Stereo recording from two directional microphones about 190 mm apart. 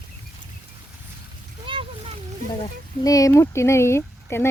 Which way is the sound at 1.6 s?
30° right (ahead or behind).